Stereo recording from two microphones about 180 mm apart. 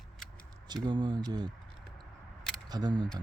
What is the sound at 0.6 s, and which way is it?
Speech, 25° right (ahead or behind).